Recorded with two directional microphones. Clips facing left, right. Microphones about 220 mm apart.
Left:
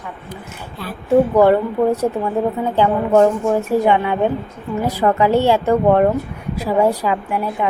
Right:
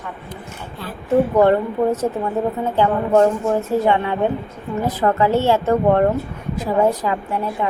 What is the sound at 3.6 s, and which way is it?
Speech, 15° left (ahead or behind).